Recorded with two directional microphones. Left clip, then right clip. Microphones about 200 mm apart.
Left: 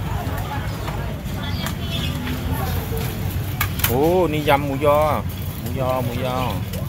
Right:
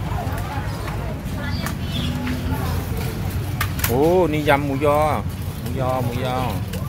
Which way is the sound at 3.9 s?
10° right (ahead or behind).